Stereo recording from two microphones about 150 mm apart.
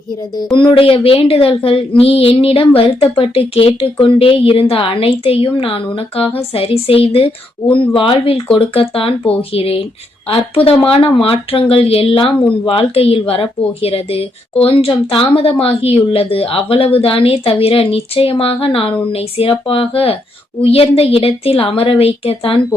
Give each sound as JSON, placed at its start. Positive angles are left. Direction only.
{"t": 0.3, "sound": "speech", "side_deg": 35}